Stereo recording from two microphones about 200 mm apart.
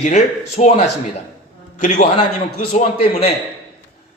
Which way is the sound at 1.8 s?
40° left (ahead or behind).